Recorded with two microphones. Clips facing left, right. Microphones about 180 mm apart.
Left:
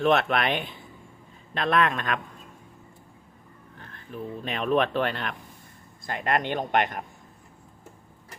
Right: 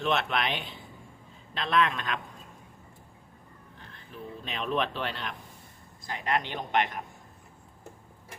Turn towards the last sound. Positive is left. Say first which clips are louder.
# left 4 dB
turn(degrees=50)  # may be behind; listen again after turning